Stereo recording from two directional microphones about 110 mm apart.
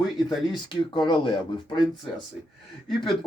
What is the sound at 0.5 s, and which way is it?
Speech, 45° left (ahead or behind).